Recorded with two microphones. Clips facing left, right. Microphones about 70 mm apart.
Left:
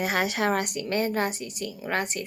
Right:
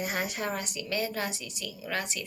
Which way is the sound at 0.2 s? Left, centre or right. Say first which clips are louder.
Left 7 dB; left.